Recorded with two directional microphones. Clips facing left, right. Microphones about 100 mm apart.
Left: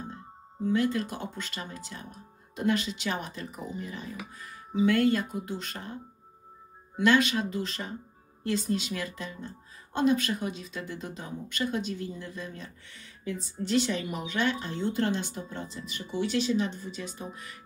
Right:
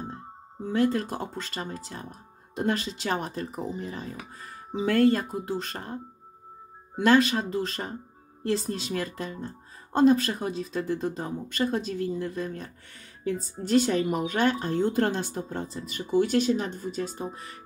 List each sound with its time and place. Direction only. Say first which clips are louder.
0.7 s speech: right 2 dB; 40° right (ahead or behind)
7.0 s speech: right 3 dB; 40° right (ahead or behind)